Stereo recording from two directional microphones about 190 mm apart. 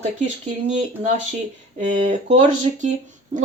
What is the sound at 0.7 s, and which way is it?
Speech, 35° right (ahead or behind).